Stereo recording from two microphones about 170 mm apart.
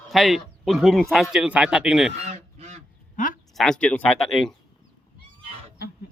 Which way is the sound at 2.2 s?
40° right (ahead or behind).